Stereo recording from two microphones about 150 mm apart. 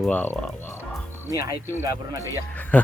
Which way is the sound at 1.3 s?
20° right (ahead or behind).